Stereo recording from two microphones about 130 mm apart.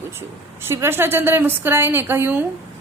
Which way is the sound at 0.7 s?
20° right (ahead or behind).